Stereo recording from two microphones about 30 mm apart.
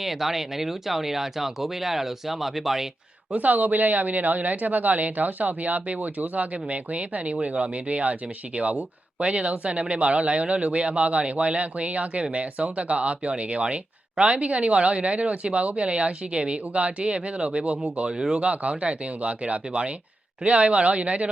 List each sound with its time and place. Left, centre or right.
0.0 s speech: centre
3.3 s speech: right
18.1 s speech: centre
18.3 s speech: right